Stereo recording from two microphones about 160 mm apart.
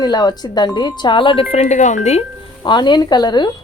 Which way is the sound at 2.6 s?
30° left (ahead or behind).